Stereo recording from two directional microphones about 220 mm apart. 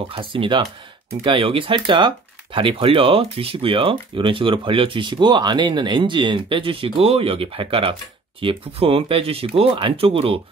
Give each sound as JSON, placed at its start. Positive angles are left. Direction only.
{"t": 0.1, "sound": "speech", "side_deg": -25}